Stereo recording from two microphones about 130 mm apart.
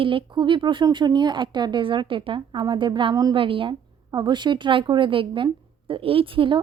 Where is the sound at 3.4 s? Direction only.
40° right (ahead or behind).